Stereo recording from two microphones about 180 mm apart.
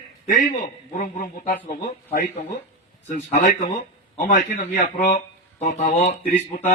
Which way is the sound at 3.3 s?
50° left (ahead or behind).